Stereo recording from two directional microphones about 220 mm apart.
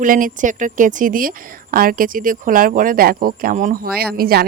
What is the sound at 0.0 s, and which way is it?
A woman's voice, 40° right (ahead or behind).